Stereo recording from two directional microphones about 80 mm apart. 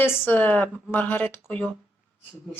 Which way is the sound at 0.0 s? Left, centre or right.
Left.